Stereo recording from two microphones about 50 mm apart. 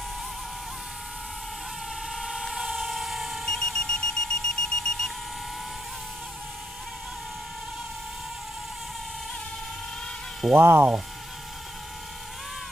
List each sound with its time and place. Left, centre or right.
2.0 s a sound: centre
3.4 s alarm: centre
10.5 s speech: right